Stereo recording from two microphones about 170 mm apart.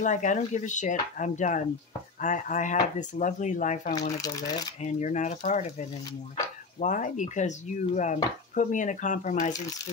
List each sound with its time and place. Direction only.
0.0 s speech: 50° left (ahead or behind)
4.2 s speech: 20° left (ahead or behind)
4.8 s speech: 45° left (ahead or behind)
6.8 s speech: 45° left (ahead or behind)